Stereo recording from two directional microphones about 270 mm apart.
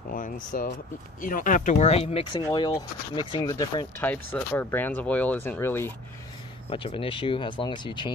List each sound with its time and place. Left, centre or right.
0.1 s speech: left; by 5.9 s centre
6.7 s speech: left